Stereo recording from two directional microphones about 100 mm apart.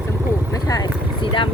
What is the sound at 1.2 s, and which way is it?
Vehicle, 55° left (ahead or behind).